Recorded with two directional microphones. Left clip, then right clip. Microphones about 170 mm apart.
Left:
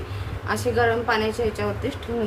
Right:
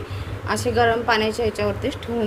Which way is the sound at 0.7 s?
10° right (ahead or behind).